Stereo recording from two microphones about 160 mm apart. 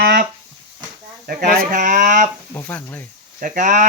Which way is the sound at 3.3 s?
55° right (ahead or behind).